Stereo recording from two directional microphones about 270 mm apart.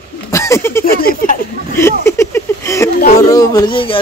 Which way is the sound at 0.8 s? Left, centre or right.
Left.